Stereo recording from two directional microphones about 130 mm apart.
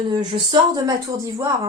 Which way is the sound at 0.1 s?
30° right (ahead or behind).